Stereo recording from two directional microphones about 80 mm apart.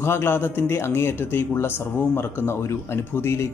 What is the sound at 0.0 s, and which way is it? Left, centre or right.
Speech, left.